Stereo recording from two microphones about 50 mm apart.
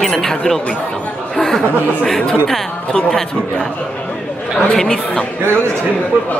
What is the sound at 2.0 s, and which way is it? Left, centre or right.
Speech, centre.